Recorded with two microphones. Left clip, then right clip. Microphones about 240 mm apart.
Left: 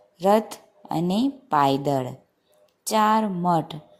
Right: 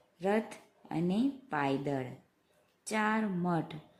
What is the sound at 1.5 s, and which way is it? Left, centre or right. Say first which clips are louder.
Speech: left 16 dB; centre.